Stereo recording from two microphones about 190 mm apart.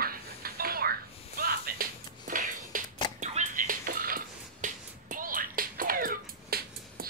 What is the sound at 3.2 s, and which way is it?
Music, 40° right (ahead or behind).